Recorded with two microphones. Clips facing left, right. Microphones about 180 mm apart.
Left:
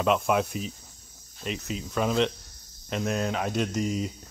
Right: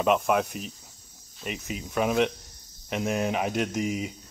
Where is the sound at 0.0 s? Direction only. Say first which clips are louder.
Right 1 dB; 5° right (ahead or behind).